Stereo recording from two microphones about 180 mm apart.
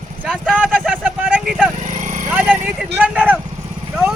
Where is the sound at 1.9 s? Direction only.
40° right (ahead or behind).